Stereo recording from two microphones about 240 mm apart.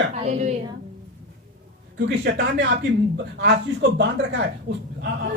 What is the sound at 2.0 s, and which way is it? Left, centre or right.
Speech, right.